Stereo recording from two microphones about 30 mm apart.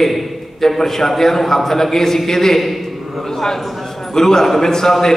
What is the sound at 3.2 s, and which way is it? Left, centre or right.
A man's voice, centre.